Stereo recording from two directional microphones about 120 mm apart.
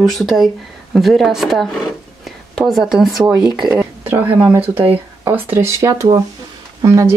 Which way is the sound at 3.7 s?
15° right (ahead or behind).